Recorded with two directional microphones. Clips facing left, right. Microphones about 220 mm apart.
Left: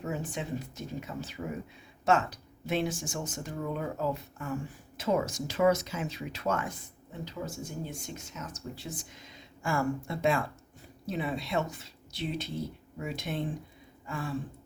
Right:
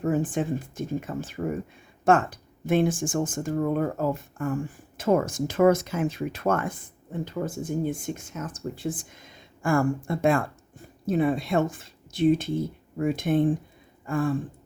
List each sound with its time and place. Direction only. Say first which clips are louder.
0.0 s speech: right 10 dB; 50° right (ahead or behind)